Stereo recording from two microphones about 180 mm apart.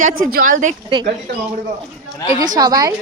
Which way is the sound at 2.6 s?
20° right (ahead or behind).